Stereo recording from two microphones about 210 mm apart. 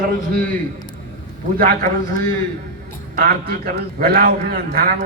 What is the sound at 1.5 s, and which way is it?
A man's voice, 40° right (ahead or behind).